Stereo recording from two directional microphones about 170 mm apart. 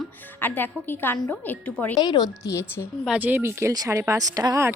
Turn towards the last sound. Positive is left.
turn(degrees=-20)  # may be behind; listen again after turning